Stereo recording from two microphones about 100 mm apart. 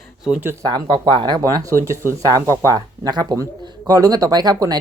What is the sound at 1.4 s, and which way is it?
Speech, 35° right (ahead or behind).